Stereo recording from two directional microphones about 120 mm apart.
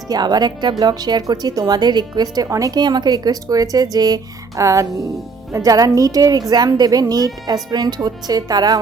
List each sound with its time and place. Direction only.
0.1 s a woman's voice: 35° right (ahead or behind)